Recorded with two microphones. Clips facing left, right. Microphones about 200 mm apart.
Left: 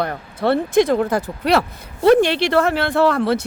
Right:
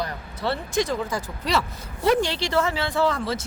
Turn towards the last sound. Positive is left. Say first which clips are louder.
# left 7 dB
turn(degrees=65)  # may be behind; listen again after turning